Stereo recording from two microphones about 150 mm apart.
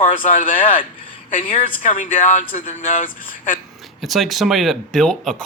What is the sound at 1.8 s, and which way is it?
Speech, 60° left (ahead or behind).